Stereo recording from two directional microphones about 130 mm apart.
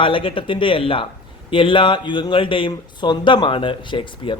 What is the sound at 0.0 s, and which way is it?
Speech, 40° left (ahead or behind).